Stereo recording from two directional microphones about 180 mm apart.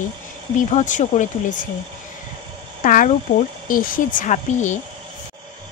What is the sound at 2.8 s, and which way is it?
A woman's voice, 45° left (ahead or behind).